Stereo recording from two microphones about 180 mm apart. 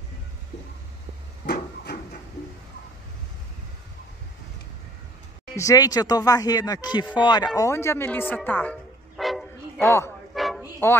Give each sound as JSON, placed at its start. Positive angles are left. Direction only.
{"t": 1.4, "sound": "printer", "side_deg": 65}
{"t": 5.6, "sound": "speech", "side_deg": 20}
{"t": 9.1, "sound": "vehicle", "side_deg": 0}
{"t": 9.8, "sound": "speech", "side_deg": 15}
{"t": 10.3, "sound": "bow-wow", "side_deg": 0}
{"t": 10.8, "sound": "speech", "side_deg": 10}